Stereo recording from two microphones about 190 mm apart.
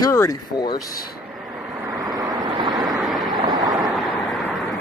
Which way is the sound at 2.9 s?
Centre (ahead or behind).